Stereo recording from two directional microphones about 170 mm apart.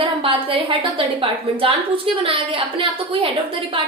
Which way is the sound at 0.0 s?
30° right (ahead or behind).